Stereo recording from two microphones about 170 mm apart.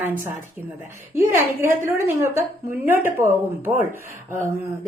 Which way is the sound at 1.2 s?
15° right (ahead or behind).